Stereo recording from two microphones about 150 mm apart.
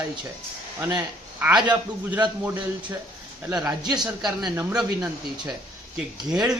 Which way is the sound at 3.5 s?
5° right (ahead or behind).